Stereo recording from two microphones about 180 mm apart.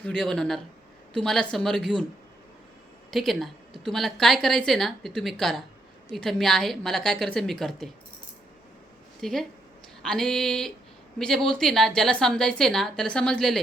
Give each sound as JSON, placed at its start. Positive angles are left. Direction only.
{"t": 0.0, "sound": "a woman's voice", "side_deg": 5}
{"t": 3.1, "sound": "a woman's voice", "side_deg": 0}
{"t": 9.2, "sound": "a woman's voice", "side_deg": 0}